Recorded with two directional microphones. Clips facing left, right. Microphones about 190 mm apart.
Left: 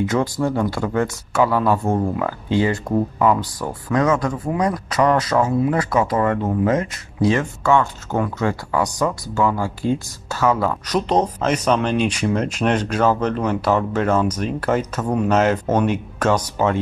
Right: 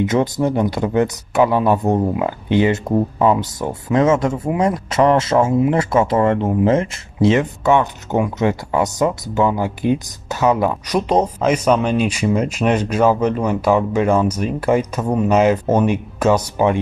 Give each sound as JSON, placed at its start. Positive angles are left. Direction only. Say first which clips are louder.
{"t": 0.0, "sound": "speech", "louder": "right 3 dB", "side_deg": -20}